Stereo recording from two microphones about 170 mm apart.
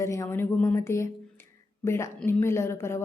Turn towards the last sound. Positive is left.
turn(degrees=15)  # may be behind; listen again after turning